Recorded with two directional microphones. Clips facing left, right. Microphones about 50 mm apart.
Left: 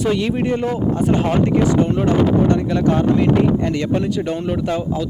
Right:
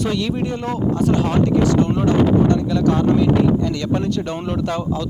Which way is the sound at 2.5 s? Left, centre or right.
Left.